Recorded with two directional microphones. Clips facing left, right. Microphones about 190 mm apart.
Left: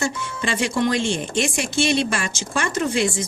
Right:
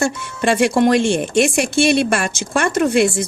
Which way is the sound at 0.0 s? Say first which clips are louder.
Right 6 dB; 65° right (ahead or behind).